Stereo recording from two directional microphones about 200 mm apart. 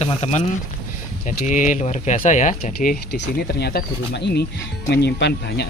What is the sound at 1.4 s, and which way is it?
Speech, 40° left (ahead or behind).